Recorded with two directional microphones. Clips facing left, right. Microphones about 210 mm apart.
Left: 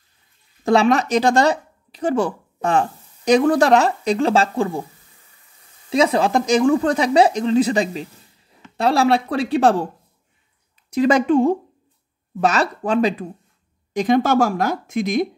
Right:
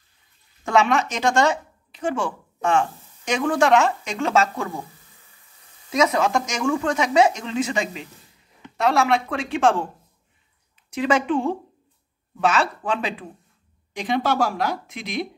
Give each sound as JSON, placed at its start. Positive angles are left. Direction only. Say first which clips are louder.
{"t": 0.7, "sound": "speech", "louder": "left 4 dB", "side_deg": 35}
{"t": 5.9, "sound": "speech", "louder": "left 3 dB", "side_deg": 30}
{"t": 10.9, "sound": "speech", "louder": "left 5 dB", "side_deg": 40}